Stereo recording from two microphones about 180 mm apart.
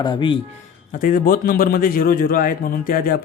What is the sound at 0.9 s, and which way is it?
A man's voice, 50° left (ahead or behind).